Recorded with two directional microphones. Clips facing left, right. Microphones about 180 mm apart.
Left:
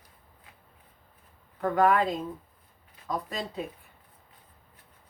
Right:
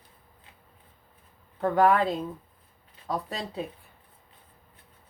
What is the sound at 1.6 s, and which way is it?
Speech, 30° right (ahead or behind).